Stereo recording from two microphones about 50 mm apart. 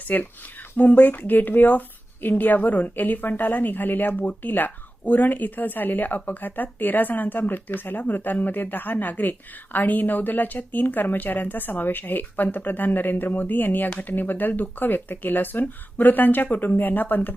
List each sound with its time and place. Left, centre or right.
0.1 s speech: left